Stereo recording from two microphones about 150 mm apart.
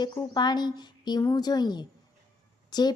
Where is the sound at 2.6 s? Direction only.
30° left (ahead or behind).